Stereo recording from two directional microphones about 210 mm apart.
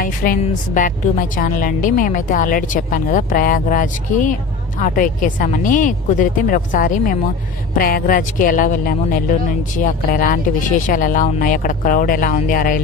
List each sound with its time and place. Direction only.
0.0 s a woman's voice: 40° left (ahead or behind)